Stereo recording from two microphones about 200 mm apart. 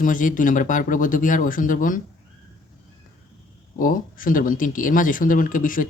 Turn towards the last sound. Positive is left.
turn(degrees=40)  # may be behind; listen again after turning